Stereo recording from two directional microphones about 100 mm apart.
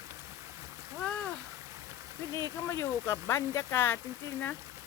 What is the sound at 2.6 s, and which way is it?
Speech, 25° left (ahead or behind).